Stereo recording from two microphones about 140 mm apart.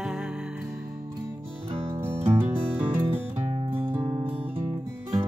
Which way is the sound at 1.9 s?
15° right (ahead or behind).